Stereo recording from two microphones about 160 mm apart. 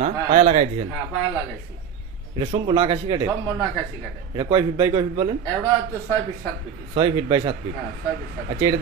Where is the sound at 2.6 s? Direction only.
30° right (ahead or behind).